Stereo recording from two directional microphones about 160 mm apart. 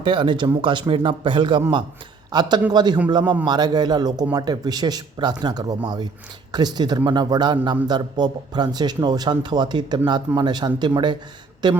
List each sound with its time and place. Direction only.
0.0 s speech: 30° right (ahead or behind)